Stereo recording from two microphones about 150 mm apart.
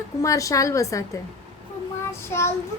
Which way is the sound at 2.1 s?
15° left (ahead or behind).